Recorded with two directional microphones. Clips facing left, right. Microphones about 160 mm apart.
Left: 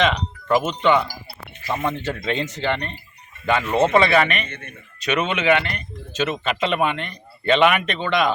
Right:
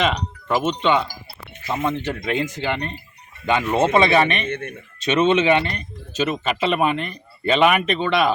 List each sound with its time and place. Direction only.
0.0 s speech: 5° right (ahead or behind)
0.8 s speech: 20° right (ahead or behind)
6.4 s speech: 5° right (ahead or behind)